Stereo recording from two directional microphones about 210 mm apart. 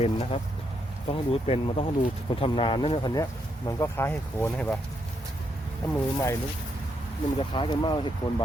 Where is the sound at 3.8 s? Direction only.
10° left (ahead or behind).